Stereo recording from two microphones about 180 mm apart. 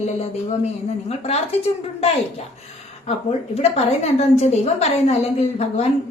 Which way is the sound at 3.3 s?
35° left (ahead or behind).